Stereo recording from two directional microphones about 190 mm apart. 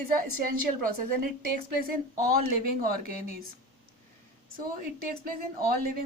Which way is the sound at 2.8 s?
50° right (ahead or behind).